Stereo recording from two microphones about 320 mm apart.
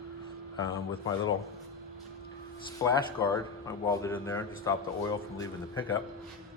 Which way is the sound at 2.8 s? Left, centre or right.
Centre.